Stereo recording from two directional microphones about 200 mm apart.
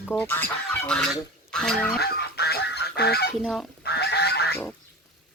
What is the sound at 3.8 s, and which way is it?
Goose, 55° left (ahead or behind).